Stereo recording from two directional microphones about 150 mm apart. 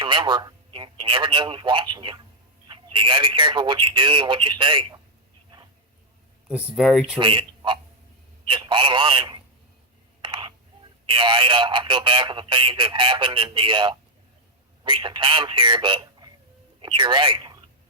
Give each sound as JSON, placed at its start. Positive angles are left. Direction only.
{"t": 0.0, "sound": "speech", "side_deg": -30}
{"t": 6.7, "sound": "speech", "side_deg": 0}
{"t": 7.2, "sound": "speech", "side_deg": -35}
{"t": 10.2, "sound": "a sound", "side_deg": -30}
{"t": 11.0, "sound": "speech", "side_deg": -35}